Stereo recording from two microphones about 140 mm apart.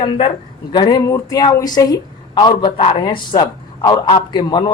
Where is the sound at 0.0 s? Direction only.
35° left (ahead or behind).